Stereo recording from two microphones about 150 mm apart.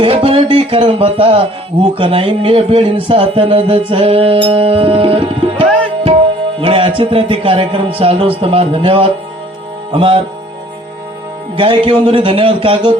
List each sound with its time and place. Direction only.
0.0 s a man's voice: 35° right (ahead or behind)
11.5 s a man's voice: 35° right (ahead or behind)